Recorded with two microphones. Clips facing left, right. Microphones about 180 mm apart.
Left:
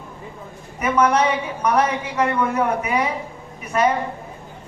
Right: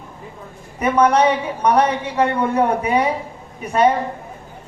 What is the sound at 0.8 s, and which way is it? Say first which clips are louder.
Speech: right 3 dB; 30° right (ahead or behind).